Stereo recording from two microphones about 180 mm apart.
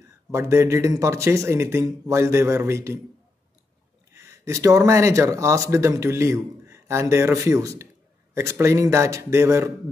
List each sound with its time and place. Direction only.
0.3 s speech: 15° right (ahead or behind)
4.1 s speech: 15° right (ahead or behind)